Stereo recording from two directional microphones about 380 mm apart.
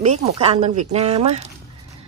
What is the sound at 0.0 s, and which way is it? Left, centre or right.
Speech, centre.